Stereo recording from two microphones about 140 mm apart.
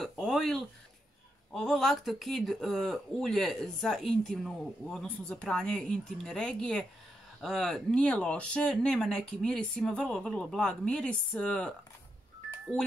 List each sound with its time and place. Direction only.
0.0 s speech: centre (ahead or behind)